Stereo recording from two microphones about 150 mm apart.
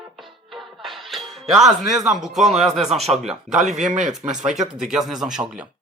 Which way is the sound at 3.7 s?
55° right (ahead or behind).